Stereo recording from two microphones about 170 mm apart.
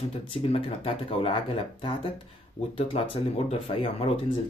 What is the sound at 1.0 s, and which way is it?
Speech, 35° left (ahead or behind).